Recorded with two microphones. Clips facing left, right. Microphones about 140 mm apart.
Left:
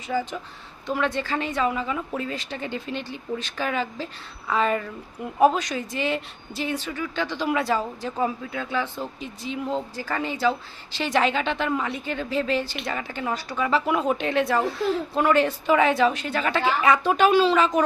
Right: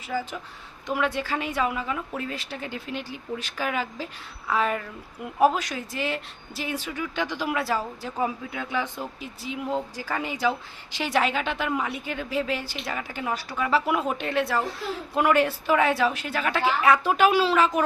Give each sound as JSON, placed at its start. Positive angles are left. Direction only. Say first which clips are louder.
{"t": 0.1, "sound": "a woman's voice", "louder": "left 3 dB", "side_deg": -5}